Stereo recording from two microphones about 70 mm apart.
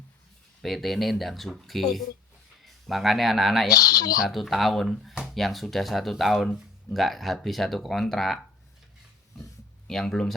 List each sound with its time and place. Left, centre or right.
0.6 s speech: centre
3.7 s speech: left
4.2 s speech: centre
9.4 s a sound: centre